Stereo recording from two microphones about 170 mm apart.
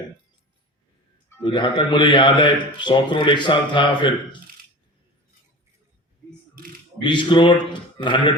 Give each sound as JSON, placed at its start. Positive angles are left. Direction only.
{"t": 1.4, "sound": "a man's voice", "side_deg": 30}
{"t": 7.0, "sound": "a man's voice", "side_deg": 30}